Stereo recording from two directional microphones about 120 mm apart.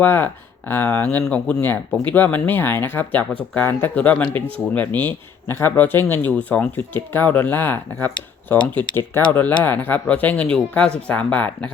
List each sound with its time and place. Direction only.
0.0 s speech: 15° left (ahead or behind)